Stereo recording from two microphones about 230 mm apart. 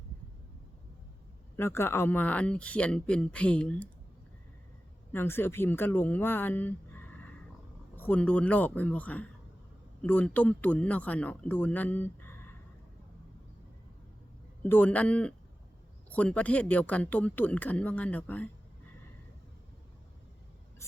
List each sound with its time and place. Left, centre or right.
1.5 s speech: centre
5.1 s speech: centre
14.6 s speech: centre